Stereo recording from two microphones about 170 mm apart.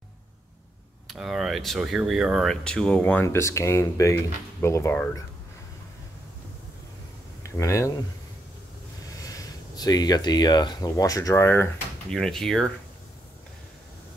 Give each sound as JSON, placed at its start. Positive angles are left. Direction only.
{"t": 1.0, "sound": "speech", "side_deg": 0}
{"t": 7.4, "sound": "speech", "side_deg": 20}
{"t": 9.2, "sound": "speech", "side_deg": 20}
{"t": 12.1, "sound": "speech", "side_deg": 5}